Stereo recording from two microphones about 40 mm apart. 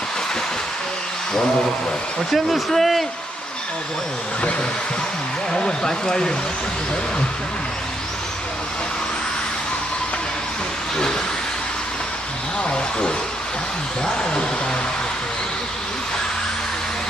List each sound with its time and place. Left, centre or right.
2.3 s speech: centre
5.5 s speech: centre
12.6 s speech: left